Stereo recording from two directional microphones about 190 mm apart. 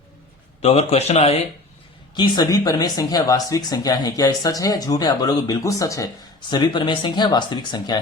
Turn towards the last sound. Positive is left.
turn(degrees=20)  # may be behind; listen again after turning